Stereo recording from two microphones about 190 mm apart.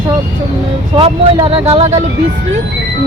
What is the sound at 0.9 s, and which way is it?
Speech, 25° right (ahead or behind).